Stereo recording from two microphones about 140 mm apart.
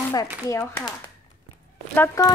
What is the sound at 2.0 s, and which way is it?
Speech, 20° left (ahead or behind).